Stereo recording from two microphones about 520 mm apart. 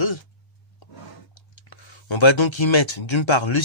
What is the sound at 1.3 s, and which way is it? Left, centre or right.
Speech, left.